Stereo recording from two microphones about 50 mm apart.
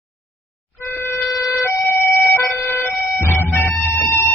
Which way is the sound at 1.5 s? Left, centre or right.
Left.